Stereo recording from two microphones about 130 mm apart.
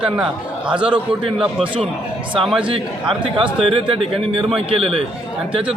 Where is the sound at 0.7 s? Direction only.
10° right (ahead or behind).